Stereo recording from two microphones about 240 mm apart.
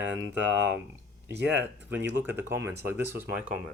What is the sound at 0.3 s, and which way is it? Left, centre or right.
Speech, right.